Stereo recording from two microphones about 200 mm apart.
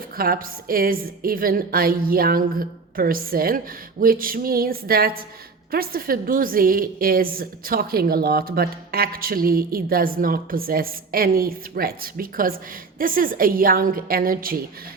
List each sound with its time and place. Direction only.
0.2 s a woman's voice: 45° right (ahead or behind)